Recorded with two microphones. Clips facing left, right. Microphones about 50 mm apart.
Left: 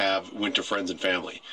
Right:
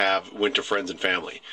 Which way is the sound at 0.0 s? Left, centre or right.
Right.